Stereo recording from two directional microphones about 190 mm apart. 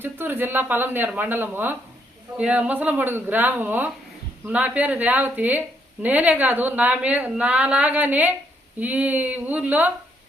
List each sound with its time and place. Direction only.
0.0 s speech: 10° right (ahead or behind)